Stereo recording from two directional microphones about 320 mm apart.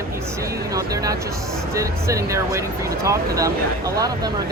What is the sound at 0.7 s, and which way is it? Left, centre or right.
Speech, centre.